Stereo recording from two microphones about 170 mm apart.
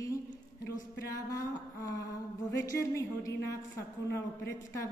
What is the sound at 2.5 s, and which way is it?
A woman's voice, 15° left (ahead or behind).